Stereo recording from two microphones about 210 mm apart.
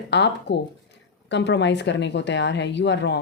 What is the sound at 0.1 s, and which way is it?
Speech, 55° left (ahead or behind).